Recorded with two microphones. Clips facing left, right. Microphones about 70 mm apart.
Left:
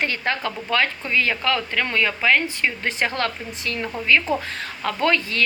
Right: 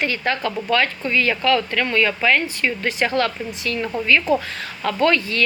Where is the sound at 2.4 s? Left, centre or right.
Left.